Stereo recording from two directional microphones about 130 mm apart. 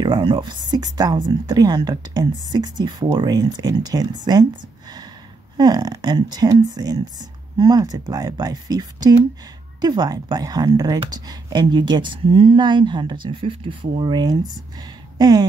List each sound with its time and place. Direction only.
0.0 s speech: 40° right (ahead or behind)
5.6 s speech: 30° right (ahead or behind)
15.1 s a sound: 30° right (ahead or behind)